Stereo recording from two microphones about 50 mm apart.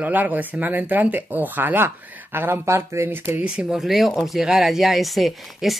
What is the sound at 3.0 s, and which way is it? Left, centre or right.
Speech, right.